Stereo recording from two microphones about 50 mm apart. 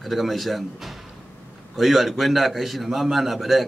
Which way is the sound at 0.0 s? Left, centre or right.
Centre.